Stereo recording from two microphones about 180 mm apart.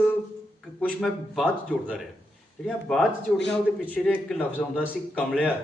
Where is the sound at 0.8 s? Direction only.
5° left (ahead or behind).